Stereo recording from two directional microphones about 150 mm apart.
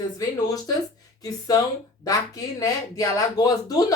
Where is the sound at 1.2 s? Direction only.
25° left (ahead or behind).